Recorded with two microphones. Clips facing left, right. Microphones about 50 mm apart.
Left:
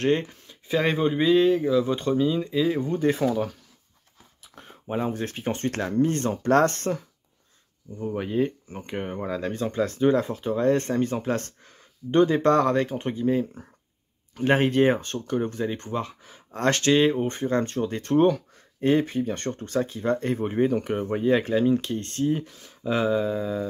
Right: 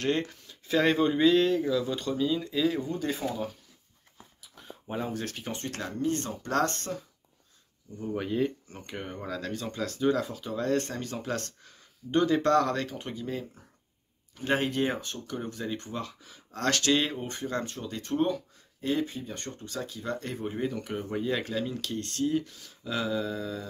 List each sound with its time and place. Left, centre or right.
0.2 s speech: centre
2.8 s speech: left
4.4 s a sound: left
4.8 s speech: left
5.5 s speech: left
8.1 s speech: centre; by 19.8 s left
19.8 s speech: left